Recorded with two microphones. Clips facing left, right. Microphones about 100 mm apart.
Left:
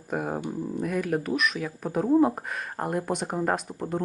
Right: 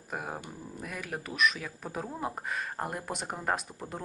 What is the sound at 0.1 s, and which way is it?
Speech, 5° left (ahead or behind).